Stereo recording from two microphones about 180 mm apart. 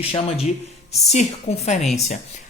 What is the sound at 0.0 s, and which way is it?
Speech, 35° left (ahead or behind).